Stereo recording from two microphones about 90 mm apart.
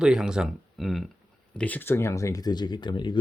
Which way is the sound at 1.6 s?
20° left (ahead or behind).